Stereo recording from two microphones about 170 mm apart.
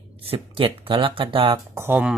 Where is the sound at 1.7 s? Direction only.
10° right (ahead or behind).